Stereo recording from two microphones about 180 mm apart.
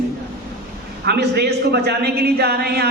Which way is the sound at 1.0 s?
65° right (ahead or behind).